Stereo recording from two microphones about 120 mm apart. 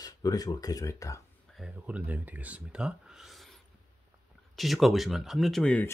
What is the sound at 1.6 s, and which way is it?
Speech, 10° right (ahead or behind).